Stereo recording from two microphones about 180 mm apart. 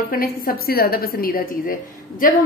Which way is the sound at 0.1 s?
55° left (ahead or behind).